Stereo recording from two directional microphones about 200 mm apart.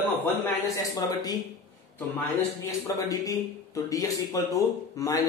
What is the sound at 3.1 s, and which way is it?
A man's voice, 15° left (ahead or behind).